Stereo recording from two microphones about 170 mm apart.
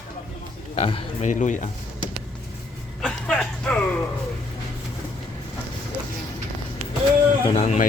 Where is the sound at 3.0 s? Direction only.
5° left (ahead or behind).